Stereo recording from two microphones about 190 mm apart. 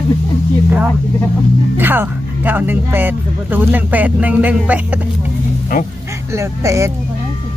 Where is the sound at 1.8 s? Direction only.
10° right (ahead or behind).